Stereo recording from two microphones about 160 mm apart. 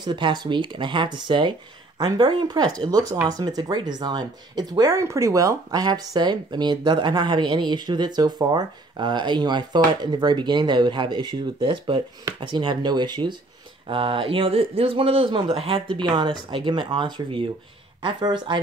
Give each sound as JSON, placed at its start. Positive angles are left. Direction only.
{"t": 0.0, "sound": "speech", "side_deg": -30}